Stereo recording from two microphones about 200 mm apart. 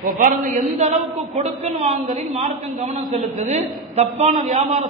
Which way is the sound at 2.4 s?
35° right (ahead or behind).